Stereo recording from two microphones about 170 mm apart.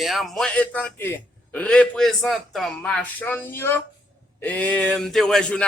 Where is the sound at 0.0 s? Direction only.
Centre (ahead or behind).